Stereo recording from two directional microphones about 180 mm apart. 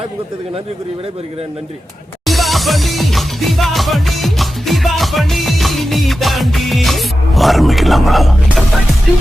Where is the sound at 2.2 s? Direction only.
Centre (ahead or behind).